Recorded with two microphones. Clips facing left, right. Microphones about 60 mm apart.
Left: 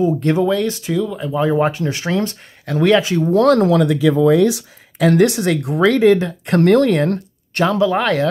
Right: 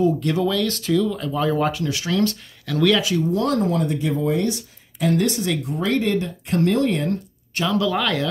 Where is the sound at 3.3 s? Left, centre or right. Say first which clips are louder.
Left 12 dB; left.